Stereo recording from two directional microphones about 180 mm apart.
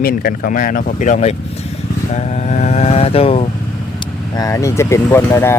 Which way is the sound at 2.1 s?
40° left (ahead or behind).